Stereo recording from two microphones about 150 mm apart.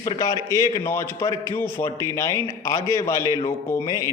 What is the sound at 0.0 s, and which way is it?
A man's voice, 25° left (ahead or behind).